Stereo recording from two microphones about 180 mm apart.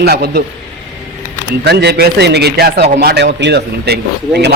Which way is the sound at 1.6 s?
70° right (ahead or behind).